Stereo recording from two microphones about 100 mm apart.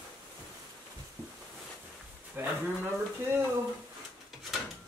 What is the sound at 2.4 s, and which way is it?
Speech, 25° right (ahead or behind).